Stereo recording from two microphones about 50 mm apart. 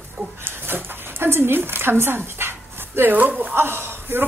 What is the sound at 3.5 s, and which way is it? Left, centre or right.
Speech, right.